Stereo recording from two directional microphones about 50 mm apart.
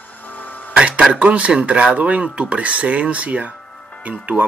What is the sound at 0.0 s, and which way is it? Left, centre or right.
Music, left.